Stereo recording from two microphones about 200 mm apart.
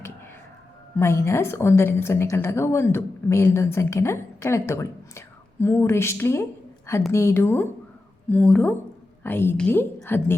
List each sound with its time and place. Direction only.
0.9 s a woman's voice: 15° left (ahead or behind)